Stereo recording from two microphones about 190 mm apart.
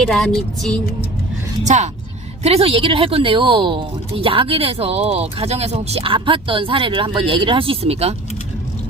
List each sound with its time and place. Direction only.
0.0 s music: 5° left (ahead or behind)
1.6 s speech: 40° right (ahead or behind)